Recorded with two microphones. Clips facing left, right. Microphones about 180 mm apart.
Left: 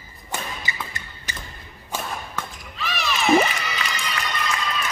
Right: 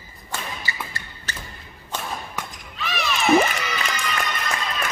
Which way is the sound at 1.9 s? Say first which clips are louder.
Left 1 dB; 10° left (ahead or behind).